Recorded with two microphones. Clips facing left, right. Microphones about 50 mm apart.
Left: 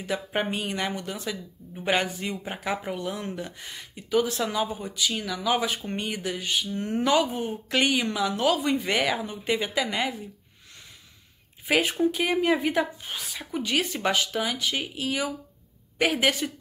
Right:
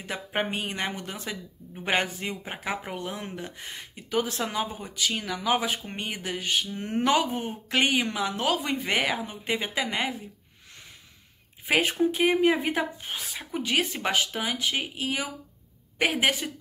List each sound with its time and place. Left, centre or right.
0.0 s speech: right
2.4 s a woman's voice: right
11.6 s a woman's voice: right